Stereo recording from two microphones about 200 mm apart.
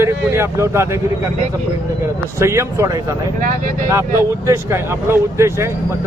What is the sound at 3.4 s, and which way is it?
Speech, 45° right (ahead or behind).